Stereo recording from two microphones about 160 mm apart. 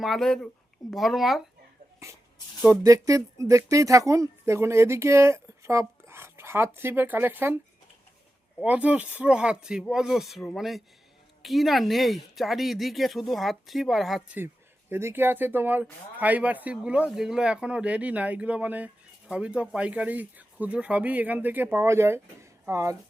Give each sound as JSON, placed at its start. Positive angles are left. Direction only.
{"t": 0.0, "sound": "speech", "side_deg": 0}
{"t": 2.6, "sound": "speech", "side_deg": -20}
{"t": 8.6, "sound": "speech", "side_deg": -10}
{"t": 14.3, "sound": "speech", "side_deg": -15}